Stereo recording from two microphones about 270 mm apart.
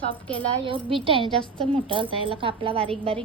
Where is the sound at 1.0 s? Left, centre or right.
Centre.